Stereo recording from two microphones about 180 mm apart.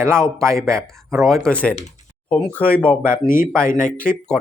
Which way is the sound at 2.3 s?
10° left (ahead or behind).